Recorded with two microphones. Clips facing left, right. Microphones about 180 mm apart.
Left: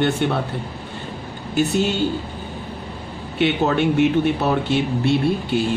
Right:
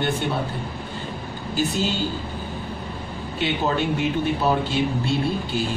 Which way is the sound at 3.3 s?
60° left (ahead or behind).